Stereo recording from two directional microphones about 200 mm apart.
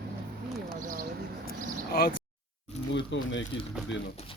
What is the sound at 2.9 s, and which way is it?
Speech, 65° left (ahead or behind).